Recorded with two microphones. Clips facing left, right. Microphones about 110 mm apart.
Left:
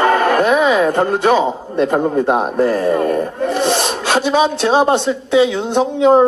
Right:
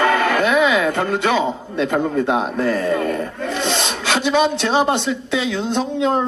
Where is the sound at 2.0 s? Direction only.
25° left (ahead or behind).